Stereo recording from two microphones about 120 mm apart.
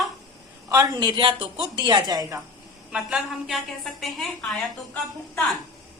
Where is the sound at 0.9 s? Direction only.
45° right (ahead or behind).